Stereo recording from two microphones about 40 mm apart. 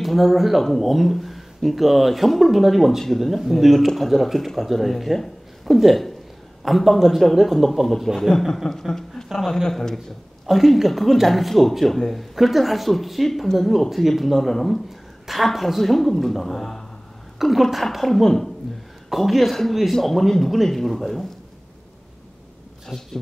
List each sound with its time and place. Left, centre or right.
0.0 s speech: centre
10.4 s speech: centre
17.4 s speech: centre
22.8 s speech: centre